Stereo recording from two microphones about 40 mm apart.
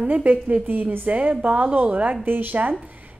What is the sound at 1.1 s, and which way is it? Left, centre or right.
A woman's voice, right.